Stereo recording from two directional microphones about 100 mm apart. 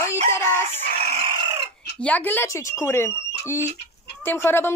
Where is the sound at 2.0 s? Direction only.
15° left (ahead or behind).